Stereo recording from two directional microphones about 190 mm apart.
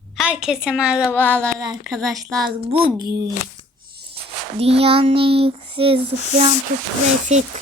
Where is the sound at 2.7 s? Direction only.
30° right (ahead or behind).